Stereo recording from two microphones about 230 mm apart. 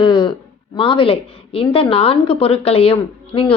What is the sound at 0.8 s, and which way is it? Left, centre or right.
A woman's voice, left.